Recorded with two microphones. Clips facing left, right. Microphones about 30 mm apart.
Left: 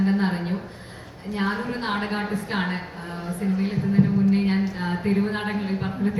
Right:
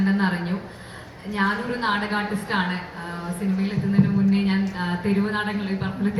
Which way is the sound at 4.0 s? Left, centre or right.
Right.